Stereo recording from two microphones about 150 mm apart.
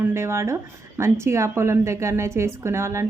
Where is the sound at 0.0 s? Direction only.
15° right (ahead or behind).